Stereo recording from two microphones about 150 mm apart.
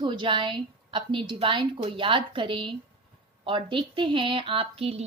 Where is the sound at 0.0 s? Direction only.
35° right (ahead or behind).